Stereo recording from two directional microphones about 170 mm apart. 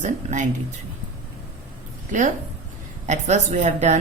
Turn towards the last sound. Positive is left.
turn(degrees=-45)  # may be behind; listen again after turning